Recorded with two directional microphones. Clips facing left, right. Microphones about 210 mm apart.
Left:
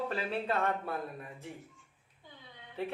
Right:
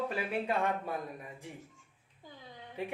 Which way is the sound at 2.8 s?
15° right (ahead or behind).